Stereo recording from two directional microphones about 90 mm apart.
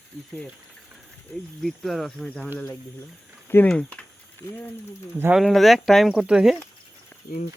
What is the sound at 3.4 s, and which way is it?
Speech, 25° left (ahead or behind).